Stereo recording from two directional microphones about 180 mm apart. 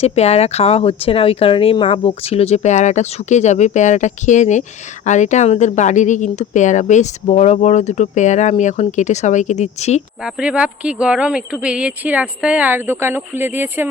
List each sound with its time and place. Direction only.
0.0 s speech: 35° left (ahead or behind)
10.2 s speech: 5° right (ahead or behind)